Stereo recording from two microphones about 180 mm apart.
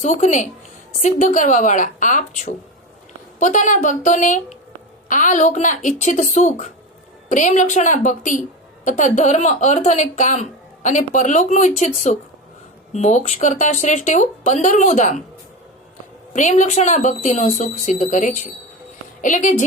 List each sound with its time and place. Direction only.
0.0 s a woman's voice: 40° left (ahead or behind)
16.3 s a woman's voice: 40° left (ahead or behind)